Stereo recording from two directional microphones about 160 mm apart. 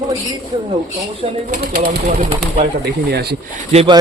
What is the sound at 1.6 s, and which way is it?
Speech, 70° right (ahead or behind).